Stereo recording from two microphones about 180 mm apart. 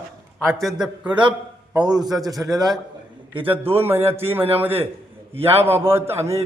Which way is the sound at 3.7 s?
10° right (ahead or behind).